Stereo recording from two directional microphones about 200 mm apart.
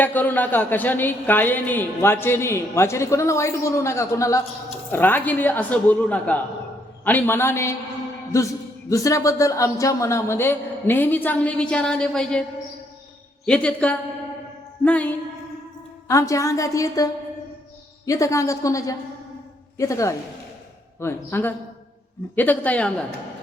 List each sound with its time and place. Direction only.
0.0 s speech: 10° left (ahead or behind)